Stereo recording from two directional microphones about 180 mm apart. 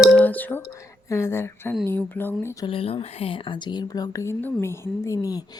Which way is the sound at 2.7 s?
30° left (ahead or behind).